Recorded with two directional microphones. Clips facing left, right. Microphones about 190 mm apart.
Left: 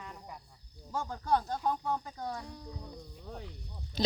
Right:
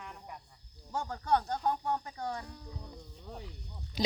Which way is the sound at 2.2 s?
Centre (ahead or behind).